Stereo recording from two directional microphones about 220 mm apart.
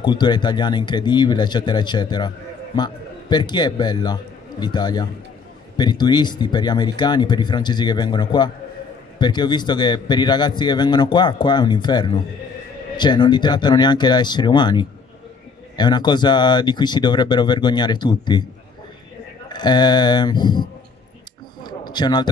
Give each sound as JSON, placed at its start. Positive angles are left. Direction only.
{"t": 0.0, "sound": "speech", "side_deg": 20}
{"t": 19.5, "sound": "speech", "side_deg": 20}
{"t": 21.6, "sound": "a sound", "side_deg": 20}